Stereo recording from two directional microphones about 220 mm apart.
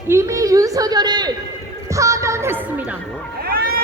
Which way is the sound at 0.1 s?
15° right (ahead or behind).